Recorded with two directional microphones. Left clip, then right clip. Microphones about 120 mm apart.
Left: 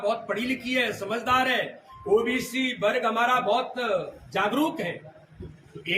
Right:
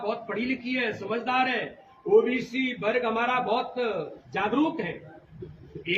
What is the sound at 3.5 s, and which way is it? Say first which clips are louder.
Speech: left 2 dB; 40° left (ahead or behind).